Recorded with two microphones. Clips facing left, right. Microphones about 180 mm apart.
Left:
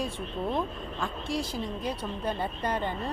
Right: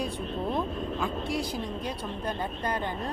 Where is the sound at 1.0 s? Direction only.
Centre (ahead or behind).